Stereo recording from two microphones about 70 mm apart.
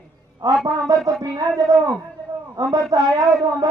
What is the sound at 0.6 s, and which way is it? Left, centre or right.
A man's voice, right.